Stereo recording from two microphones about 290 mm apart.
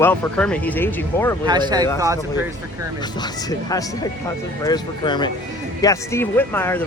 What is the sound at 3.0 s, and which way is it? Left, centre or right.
Speech, centre.